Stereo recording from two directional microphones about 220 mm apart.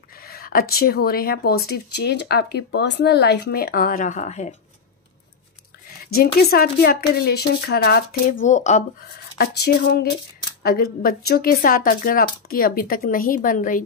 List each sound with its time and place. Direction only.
0.2 s speech: 45° left (ahead or behind)
6.1 s speech: 45° left (ahead or behind)
8.5 s speech: 35° left (ahead or behind)
9.4 s speech: 45° left (ahead or behind)